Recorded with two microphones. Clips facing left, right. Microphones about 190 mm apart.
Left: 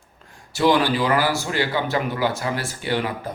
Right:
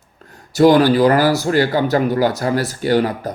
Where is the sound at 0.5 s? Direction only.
40° right (ahead or behind).